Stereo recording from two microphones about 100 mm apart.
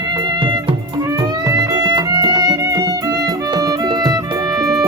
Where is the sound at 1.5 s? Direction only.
40° right (ahead or behind).